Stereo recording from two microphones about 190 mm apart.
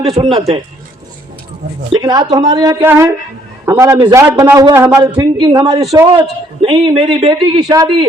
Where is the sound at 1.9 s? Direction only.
25° right (ahead or behind).